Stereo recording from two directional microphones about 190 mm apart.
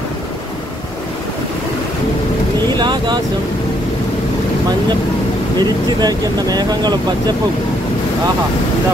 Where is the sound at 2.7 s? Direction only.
25° right (ahead or behind).